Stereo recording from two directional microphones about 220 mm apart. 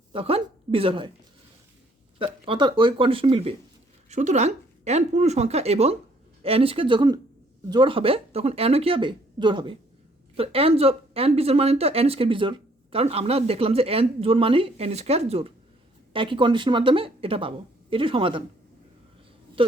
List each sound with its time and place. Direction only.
0.1 s speech: 25° right (ahead or behind)
2.1 s speech: 25° right (ahead or behind)
19.6 s speech: 25° right (ahead or behind)